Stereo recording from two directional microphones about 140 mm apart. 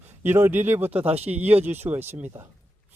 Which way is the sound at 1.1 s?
45° right (ahead or behind).